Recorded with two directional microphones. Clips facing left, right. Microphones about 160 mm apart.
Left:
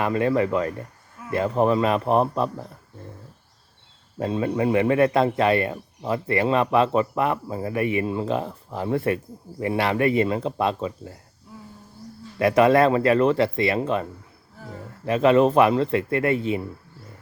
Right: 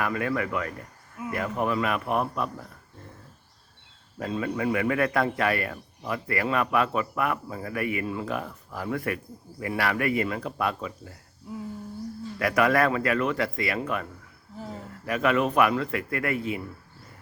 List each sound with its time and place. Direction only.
0.0 s a man's voice: 30° left (ahead or behind)
4.2 s a man's voice: 30° left (ahead or behind)
12.4 s a man's voice: 25° left (ahead or behind)